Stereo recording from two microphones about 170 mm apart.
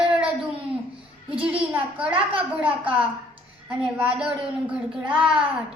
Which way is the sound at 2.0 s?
10° right (ahead or behind).